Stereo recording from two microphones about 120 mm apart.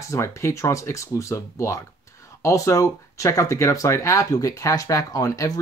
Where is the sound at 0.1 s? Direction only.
25° left (ahead or behind).